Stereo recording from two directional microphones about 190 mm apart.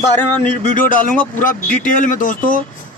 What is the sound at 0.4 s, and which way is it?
Speech, 40° left (ahead or behind).